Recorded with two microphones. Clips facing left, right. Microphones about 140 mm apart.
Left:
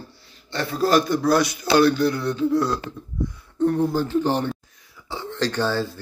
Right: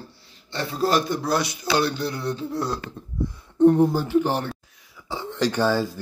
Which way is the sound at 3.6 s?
20° right (ahead or behind).